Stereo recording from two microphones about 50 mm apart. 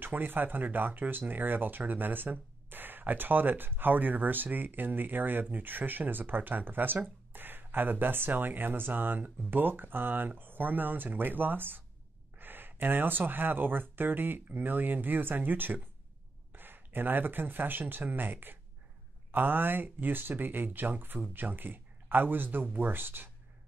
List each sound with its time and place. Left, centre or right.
0.0 s speech: right